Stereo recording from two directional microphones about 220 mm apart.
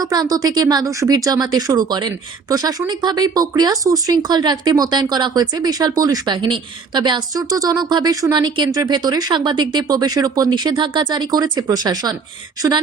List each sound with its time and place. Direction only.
0.0 s a woman's voice: 15° right (ahead or behind)